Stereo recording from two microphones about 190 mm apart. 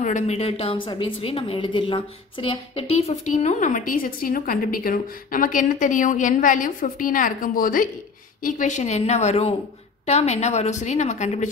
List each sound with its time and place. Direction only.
0.0 s a woman's voice: 40° left (ahead or behind)